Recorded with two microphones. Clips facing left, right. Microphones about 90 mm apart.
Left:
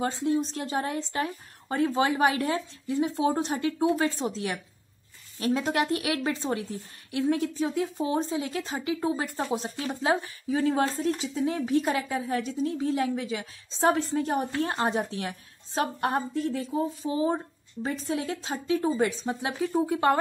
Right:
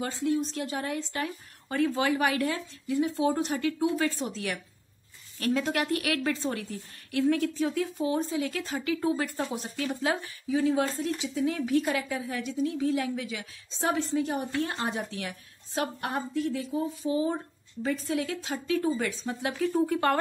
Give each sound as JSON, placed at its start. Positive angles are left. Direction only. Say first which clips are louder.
{"t": 0.0, "sound": "a woman's voice", "louder": "left 2 dB", "side_deg": 30}
{"t": 10.5, "sound": "a woman's voice", "louder": "left 1 dB", "side_deg": 45}